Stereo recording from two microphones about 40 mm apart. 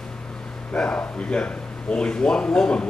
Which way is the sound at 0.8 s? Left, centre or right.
Left.